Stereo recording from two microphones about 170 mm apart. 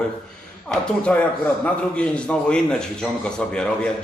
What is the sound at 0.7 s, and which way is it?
Speech, 5° left (ahead or behind).